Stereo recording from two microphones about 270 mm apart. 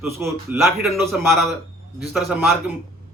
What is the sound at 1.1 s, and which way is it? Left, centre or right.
A man's voice, centre.